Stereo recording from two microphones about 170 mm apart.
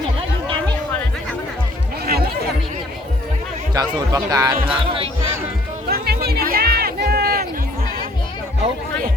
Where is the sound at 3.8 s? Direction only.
20° right (ahead or behind).